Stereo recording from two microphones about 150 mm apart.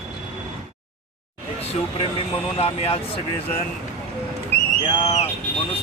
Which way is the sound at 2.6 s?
40° left (ahead or behind).